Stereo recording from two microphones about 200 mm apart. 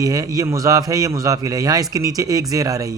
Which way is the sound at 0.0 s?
15° right (ahead or behind).